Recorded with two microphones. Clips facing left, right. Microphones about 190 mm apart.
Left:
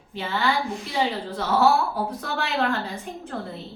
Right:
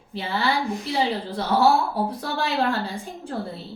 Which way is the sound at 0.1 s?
35° right (ahead or behind).